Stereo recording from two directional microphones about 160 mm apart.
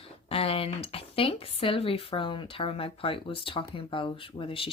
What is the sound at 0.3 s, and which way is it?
Speech, 35° left (ahead or behind).